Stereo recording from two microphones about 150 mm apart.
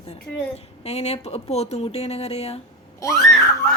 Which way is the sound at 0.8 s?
45° left (ahead or behind).